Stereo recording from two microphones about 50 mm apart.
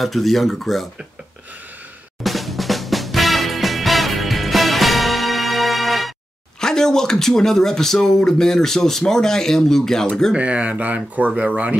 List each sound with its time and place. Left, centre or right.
0.0 s speech: centre
2.2 s music: centre
6.6 s speech: centre
10.3 s speech: right